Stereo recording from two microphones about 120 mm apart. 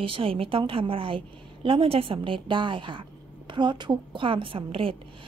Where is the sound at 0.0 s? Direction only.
50° right (ahead or behind).